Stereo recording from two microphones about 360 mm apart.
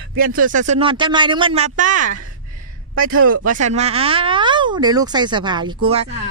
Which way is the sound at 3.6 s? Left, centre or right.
Centre.